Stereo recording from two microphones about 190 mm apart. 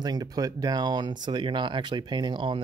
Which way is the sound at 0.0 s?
20° right (ahead or behind).